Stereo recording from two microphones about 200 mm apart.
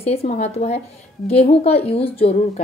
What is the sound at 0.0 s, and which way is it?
A woman's voice, 30° left (ahead or behind).